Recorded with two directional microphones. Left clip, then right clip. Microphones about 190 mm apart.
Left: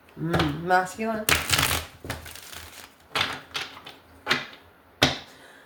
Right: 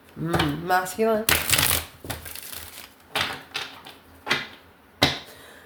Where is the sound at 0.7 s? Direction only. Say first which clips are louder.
Left 1 dB; 50° right (ahead or behind).